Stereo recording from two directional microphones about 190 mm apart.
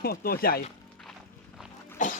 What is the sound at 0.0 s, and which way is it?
Speech, 55° left (ahead or behind).